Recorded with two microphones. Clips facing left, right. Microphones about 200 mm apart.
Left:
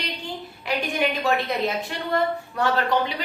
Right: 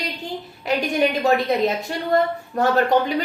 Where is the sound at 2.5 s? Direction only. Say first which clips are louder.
Right 5 dB; 45° right (ahead or behind).